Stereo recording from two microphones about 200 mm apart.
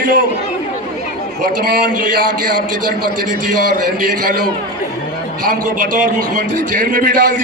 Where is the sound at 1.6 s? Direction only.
40° right (ahead or behind).